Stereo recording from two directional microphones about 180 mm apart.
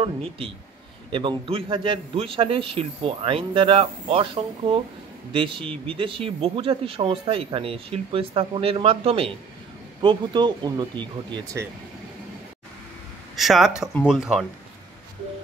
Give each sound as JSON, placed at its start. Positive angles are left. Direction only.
{"t": 0.0, "sound": "a man's voice", "side_deg": -30}
{"t": 13.4, "sound": "speech", "side_deg": 0}